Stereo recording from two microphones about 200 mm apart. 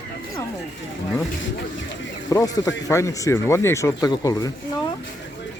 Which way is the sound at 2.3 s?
20° left (ahead or behind).